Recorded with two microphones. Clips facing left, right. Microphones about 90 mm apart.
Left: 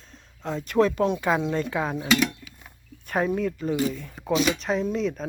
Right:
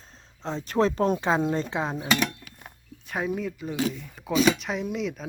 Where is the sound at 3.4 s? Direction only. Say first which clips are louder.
Left 4 dB; 5° right (ahead or behind).